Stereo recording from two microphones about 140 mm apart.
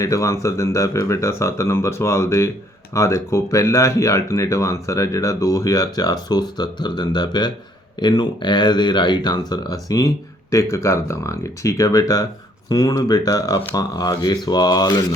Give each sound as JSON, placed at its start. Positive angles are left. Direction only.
{"t": 0.0, "sound": "speech", "side_deg": 20}